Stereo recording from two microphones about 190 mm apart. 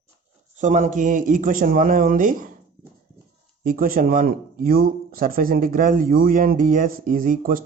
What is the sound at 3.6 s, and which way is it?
Speech, 50° right (ahead or behind).